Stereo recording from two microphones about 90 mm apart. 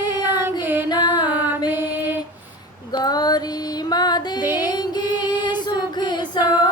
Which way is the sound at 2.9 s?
50° left (ahead or behind).